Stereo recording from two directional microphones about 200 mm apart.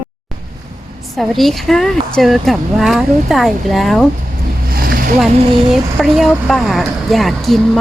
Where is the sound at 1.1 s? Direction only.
Centre (ahead or behind).